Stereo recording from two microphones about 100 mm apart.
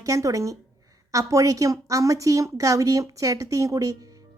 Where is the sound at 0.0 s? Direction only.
35° right (ahead or behind).